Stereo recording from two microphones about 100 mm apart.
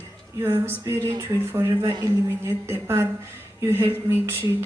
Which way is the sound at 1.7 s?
50° right (ahead or behind).